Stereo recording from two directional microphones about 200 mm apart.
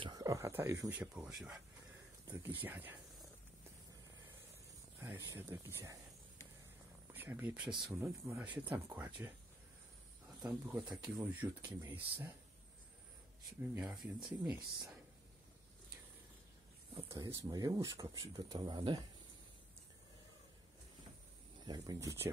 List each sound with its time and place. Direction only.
0.0 s speech: 20° right (ahead or behind)
5.0 s speech: 10° right (ahead or behind)
7.1 s speech: 10° right (ahead or behind)
10.4 s speech: 5° right (ahead or behind)
11.0 s speech: 15° right (ahead or behind)
13.6 s speech: 5° right (ahead or behind)
16.9 s speech: 15° right (ahead or behind)
21.6 s speech: 20° right (ahead or behind)